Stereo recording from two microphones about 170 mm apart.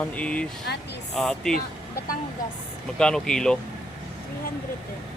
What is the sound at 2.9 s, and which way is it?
Speech, 5° left (ahead or behind).